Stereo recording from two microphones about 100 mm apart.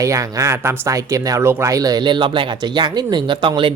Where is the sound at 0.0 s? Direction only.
35° right (ahead or behind).